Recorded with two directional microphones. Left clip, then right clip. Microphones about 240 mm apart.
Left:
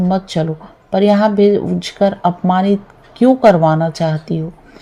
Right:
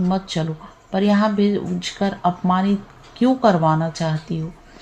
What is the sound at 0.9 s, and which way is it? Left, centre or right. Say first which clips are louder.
Speech: left 7 dB; left.